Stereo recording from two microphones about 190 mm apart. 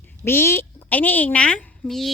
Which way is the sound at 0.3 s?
10° left (ahead or behind).